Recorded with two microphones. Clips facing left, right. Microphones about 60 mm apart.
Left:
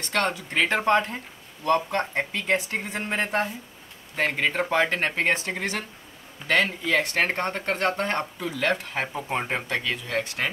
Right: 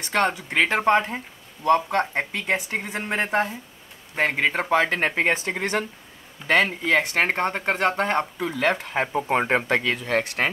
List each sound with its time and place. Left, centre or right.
0.1 s speech: centre
4.1 s speech: right
5.4 s speech: right
9.1 s speech: right
9.8 s speech: right